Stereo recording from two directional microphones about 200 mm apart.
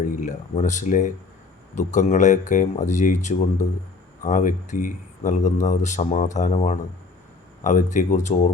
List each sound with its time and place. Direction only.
0.1 s a man's voice: 40° left (ahead or behind)